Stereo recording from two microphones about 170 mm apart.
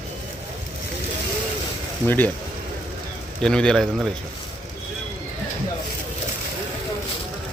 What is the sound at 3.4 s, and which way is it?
Speech, 5° left (ahead or behind).